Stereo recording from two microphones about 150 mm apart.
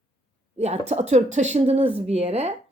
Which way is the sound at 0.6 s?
45° right (ahead or behind).